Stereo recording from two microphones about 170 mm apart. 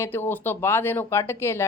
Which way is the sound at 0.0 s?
15° left (ahead or behind).